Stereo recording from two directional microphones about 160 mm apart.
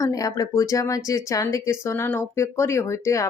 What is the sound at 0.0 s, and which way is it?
Speech, 20° left (ahead or behind).